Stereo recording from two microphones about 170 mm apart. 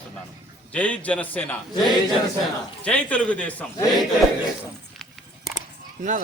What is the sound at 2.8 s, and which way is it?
Speech, 10° left (ahead or behind).